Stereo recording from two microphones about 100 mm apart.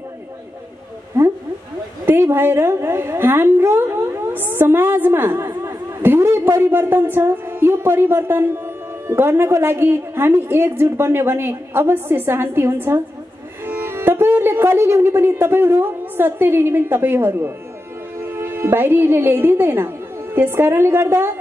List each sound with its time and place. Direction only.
2.0 s a woman's voice: 25° right (ahead or behind)